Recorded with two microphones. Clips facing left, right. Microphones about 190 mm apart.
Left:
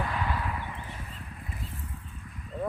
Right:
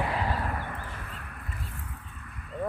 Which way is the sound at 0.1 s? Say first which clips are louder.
Right 2 dB; 35° right (ahead or behind).